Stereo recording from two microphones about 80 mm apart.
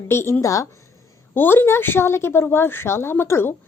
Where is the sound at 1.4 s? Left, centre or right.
Left.